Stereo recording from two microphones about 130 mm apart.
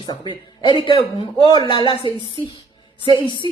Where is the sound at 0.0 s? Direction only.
35° left (ahead or behind).